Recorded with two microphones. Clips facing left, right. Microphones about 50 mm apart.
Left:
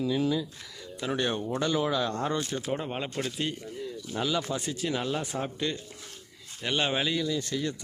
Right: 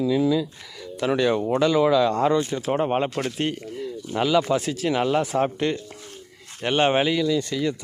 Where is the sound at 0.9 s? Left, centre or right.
Right.